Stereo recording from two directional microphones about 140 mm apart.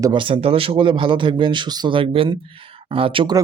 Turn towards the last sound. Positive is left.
turn(degrees=-40)  # may be behind; listen again after turning